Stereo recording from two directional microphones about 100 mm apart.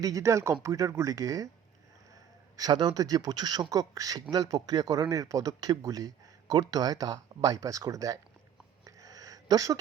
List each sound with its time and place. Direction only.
0.0 s a man's voice: 30° right (ahead or behind)
2.6 s a man's voice: 45° right (ahead or behind)
9.0 s a sound: 35° right (ahead or behind)